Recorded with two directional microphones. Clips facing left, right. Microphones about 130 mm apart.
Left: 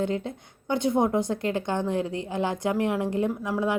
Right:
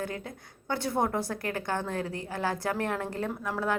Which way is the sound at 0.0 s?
25° left (ahead or behind).